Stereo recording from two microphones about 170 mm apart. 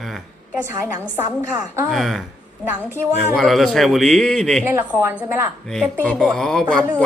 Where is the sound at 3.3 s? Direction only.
Centre (ahead or behind).